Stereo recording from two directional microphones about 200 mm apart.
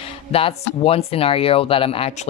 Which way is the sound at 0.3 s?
30° left (ahead or behind).